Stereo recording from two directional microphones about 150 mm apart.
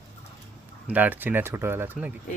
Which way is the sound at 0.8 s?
10° right (ahead or behind).